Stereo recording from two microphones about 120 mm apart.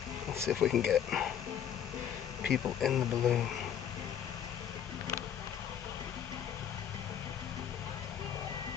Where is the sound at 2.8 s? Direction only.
Centre (ahead or behind).